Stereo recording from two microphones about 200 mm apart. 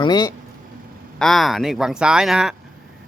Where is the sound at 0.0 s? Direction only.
20° left (ahead or behind).